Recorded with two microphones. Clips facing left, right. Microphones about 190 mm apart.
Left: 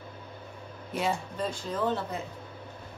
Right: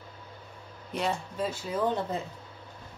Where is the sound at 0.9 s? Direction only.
Centre (ahead or behind).